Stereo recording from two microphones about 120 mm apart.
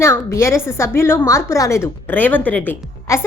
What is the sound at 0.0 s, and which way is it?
A woman's voice, 25° left (ahead or behind).